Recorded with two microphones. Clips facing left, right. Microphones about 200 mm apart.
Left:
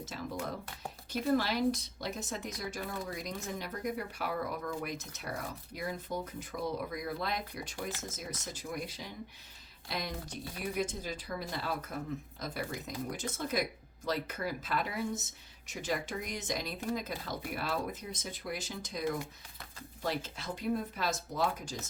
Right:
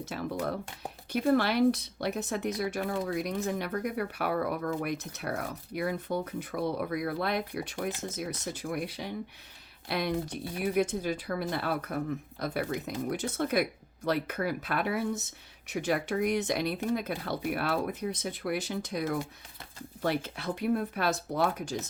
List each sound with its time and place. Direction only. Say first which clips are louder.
0.0 s speech: right 6 dB; 65° right (ahead or behind)